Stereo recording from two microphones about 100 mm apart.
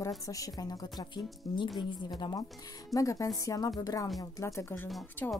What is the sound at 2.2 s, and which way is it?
Speech, 45° left (ahead or behind).